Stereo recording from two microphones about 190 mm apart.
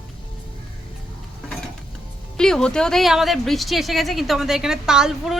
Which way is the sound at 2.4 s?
5° left (ahead or behind).